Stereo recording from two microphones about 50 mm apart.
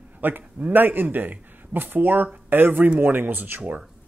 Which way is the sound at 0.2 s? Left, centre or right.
Right.